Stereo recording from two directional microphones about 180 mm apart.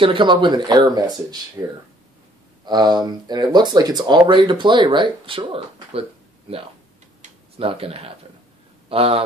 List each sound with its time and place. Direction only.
0.0 s speech: 25° right (ahead or behind)
2.6 s speech: 25° right (ahead or behind)
7.2 s tick-tock: 35° right (ahead or behind)
8.8 s speech: 30° right (ahead or behind)